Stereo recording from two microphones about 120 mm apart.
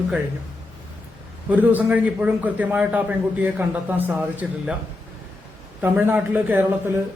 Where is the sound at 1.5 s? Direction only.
15° right (ahead or behind).